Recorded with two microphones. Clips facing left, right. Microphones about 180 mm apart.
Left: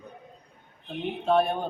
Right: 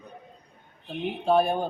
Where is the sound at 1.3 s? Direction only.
Centre (ahead or behind).